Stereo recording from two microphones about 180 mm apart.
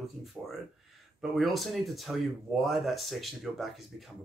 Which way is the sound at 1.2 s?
Centre (ahead or behind).